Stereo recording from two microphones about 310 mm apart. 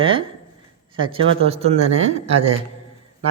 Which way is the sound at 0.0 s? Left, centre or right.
Centre.